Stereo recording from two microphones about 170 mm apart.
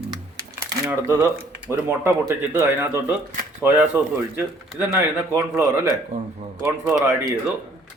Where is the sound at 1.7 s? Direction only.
15° right (ahead or behind).